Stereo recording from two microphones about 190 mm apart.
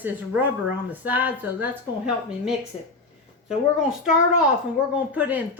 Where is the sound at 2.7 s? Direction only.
35° left (ahead or behind).